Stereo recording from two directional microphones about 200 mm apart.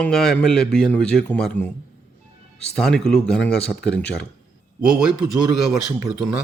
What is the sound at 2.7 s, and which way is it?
A man's voice, centre (ahead or behind).